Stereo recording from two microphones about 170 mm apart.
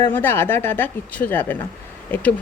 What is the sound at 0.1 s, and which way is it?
Speech, 10° left (ahead or behind).